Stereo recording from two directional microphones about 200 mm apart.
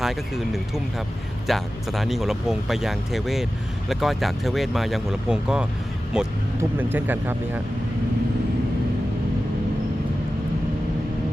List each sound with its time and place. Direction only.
0.0 s speech: centre (ahead or behind)